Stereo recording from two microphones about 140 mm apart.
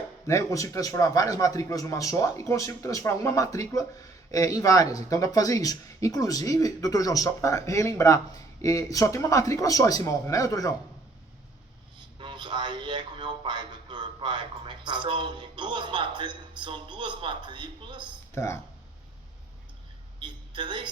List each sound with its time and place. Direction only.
0.3 s speech: 20° left (ahead or behind)
11.9 s a man's voice: 35° right (ahead or behind)
18.3 s speech: 20° left (ahead or behind)
20.1 s a woman's voice: 35° right (ahead or behind)